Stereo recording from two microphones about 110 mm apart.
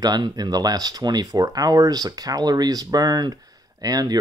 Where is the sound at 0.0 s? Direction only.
40° right (ahead or behind).